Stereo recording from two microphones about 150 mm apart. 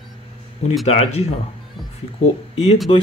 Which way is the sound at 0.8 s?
45° left (ahead or behind).